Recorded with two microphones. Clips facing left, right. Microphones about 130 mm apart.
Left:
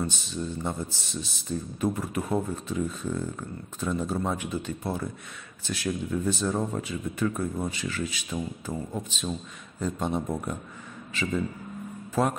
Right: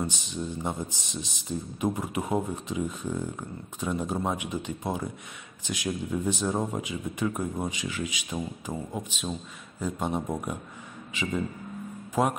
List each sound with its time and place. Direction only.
0.0 s speech: 15° right (ahead or behind)